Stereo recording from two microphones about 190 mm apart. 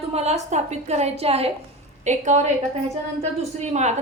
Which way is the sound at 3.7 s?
35° right (ahead or behind).